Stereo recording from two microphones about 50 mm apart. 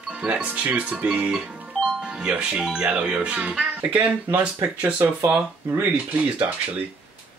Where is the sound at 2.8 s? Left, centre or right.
Right.